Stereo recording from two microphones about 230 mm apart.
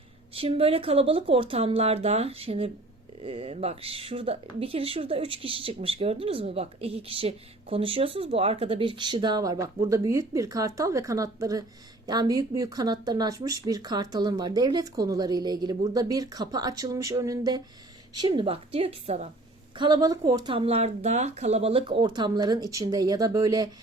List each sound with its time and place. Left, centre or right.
0.3 s speech: right